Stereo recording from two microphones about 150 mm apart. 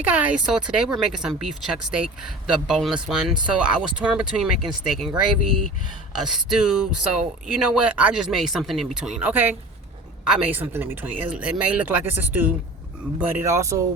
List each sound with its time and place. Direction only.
0.0 s speech: 10° right (ahead or behind)
6.1 s speech: 5° right (ahead or behind); by 13.8 s 20° right (ahead or behind)